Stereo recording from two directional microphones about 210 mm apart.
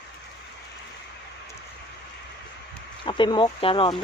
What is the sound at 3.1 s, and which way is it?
Speech, 20° left (ahead or behind).